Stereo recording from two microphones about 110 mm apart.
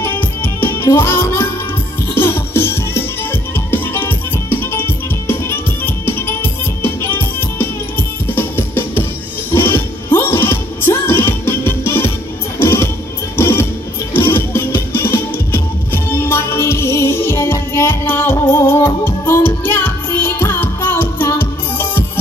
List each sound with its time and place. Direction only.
0.0 s music: 20° left (ahead or behind)